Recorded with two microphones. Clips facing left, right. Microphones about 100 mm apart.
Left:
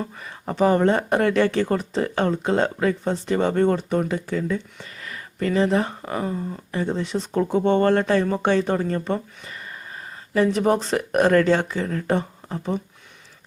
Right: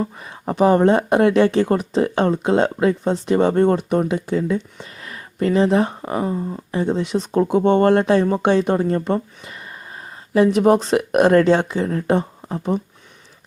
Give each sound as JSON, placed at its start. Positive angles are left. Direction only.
{"t": 0.0, "sound": "speech", "side_deg": -20}
{"t": 3.4, "sound": "speech", "side_deg": -35}
{"t": 7.5, "sound": "speech", "side_deg": -50}
{"t": 7.9, "sound": "speech", "side_deg": -25}
{"t": 10.3, "sound": "speech", "side_deg": -20}